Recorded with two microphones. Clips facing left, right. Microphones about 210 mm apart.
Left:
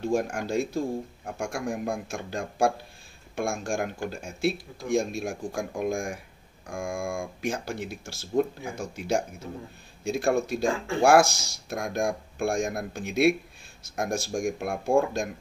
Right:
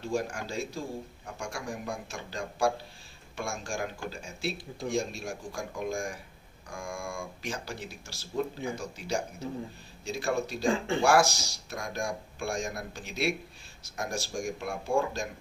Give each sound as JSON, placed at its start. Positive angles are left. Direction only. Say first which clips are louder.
{"t": 0.0, "sound": "a man's voice", "louder": "left 5 dB", "side_deg": 50}